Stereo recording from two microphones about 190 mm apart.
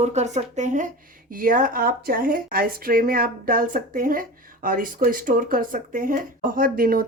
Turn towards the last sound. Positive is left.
turn(degrees=-50)  # may be behind; listen again after turning